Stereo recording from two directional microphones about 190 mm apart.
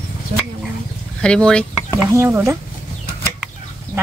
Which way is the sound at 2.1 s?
15° right (ahead or behind).